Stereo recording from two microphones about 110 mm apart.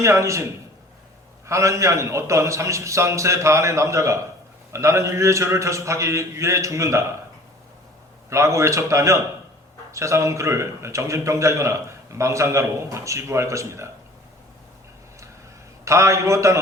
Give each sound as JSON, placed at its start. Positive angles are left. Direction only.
{"t": 0.0, "sound": "a man's voice", "side_deg": -25}
{"t": 1.5, "sound": "a man's voice", "side_deg": -25}
{"t": 8.3, "sound": "a man's voice", "side_deg": -25}
{"t": 15.8, "sound": "a man's voice", "side_deg": -25}